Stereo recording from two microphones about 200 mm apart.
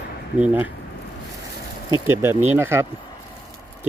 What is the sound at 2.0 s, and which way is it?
Speech, 10° right (ahead or behind).